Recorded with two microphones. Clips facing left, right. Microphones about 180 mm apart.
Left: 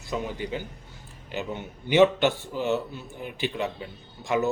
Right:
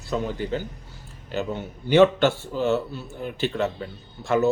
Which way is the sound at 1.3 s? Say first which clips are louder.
Right 4 dB; 15° left (ahead or behind).